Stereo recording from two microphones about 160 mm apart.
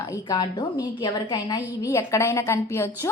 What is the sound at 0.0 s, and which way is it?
A woman's voice, 25° left (ahead or behind).